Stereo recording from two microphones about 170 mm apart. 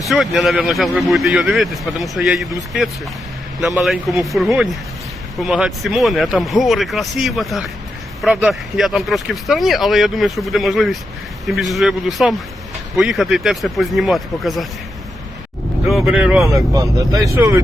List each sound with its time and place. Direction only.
0.0 s speech: centre (ahead or behind)
15.9 s speech: centre (ahead or behind)
16.6 s speech: 20° right (ahead or behind)